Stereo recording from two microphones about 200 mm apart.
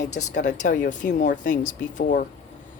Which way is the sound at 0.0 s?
35° left (ahead or behind).